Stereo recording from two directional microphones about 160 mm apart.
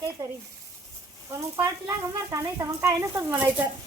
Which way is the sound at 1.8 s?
20° right (ahead or behind).